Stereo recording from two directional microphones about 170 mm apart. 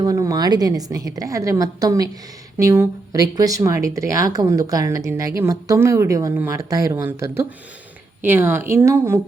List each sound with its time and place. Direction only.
0.0 s a woman's voice: 20° right (ahead or behind)